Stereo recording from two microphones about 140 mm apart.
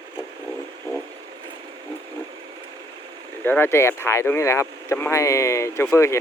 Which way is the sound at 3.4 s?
15° left (ahead or behind).